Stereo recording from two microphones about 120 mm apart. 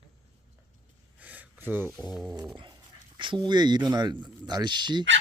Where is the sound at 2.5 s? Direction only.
40° right (ahead or behind).